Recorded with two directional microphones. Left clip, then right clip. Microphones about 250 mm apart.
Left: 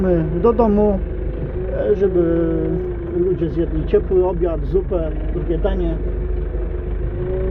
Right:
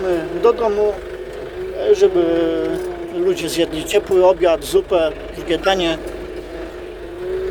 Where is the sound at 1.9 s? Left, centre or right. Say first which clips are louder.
Right 4 dB; centre.